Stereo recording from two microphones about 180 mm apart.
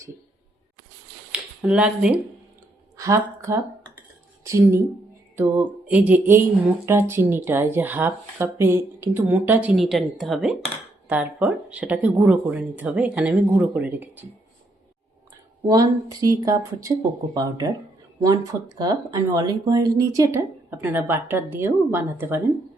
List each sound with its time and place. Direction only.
1.3 s speech: 5° right (ahead or behind)
3.0 s speech: 15° right (ahead or behind)
15.6 s speech: 20° right (ahead or behind)
18.8 s speech: 20° right (ahead or behind)